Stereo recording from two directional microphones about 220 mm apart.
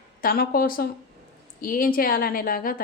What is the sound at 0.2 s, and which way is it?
Speech, 40° left (ahead or behind).